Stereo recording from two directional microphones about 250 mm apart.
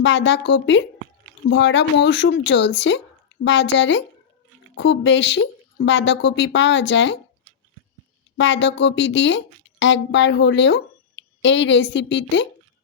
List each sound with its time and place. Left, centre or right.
0.0 s speech: left
8.4 s speech: left